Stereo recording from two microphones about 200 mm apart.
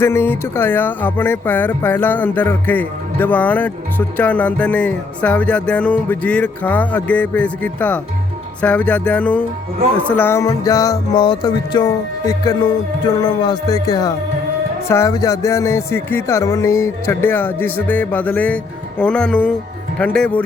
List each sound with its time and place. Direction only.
0.0 s speech: 10° left (ahead or behind)